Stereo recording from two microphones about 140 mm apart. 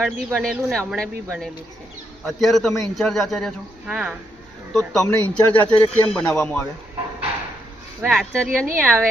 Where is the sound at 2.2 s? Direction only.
Centre (ahead or behind).